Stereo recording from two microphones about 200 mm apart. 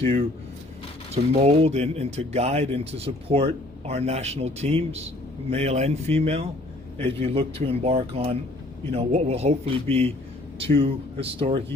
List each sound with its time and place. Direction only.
0.0 s speech: 30° right (ahead or behind)
10.8 s speech: 30° right (ahead or behind)